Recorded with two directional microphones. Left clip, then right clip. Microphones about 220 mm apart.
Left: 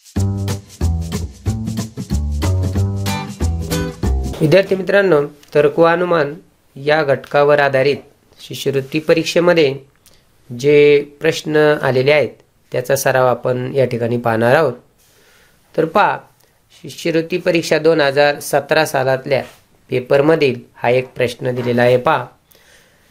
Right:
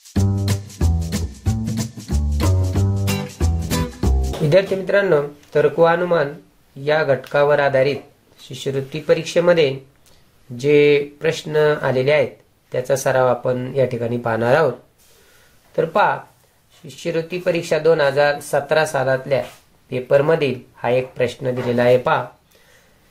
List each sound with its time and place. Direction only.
0.1 s music: centre (ahead or behind)
4.0 s music: centre (ahead or behind)
4.5 s speech: 40° left (ahead or behind)
15.7 s speech: 40° left (ahead or behind)